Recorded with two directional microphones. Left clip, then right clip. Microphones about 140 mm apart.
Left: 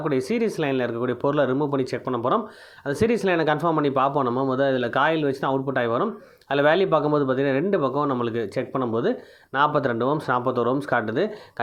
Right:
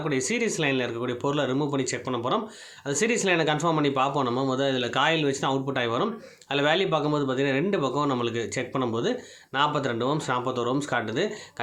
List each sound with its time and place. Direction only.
0.0 s speech: 40° left (ahead or behind)